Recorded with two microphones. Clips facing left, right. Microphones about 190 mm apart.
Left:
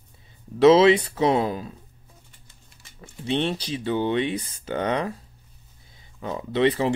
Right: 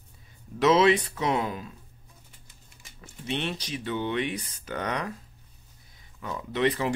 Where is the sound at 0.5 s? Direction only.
30° left (ahead or behind).